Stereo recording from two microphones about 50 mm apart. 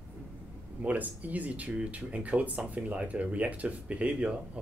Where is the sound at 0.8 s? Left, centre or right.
Right.